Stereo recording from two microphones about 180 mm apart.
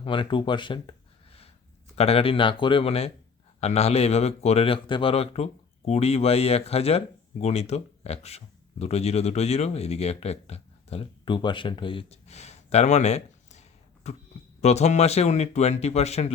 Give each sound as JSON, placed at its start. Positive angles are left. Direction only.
{"t": 0.0, "sound": "speech", "side_deg": 30}
{"t": 2.0, "sound": "speech", "side_deg": 35}